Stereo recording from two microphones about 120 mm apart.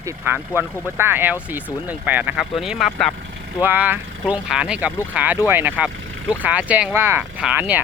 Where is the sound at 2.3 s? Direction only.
5° right (ahead or behind).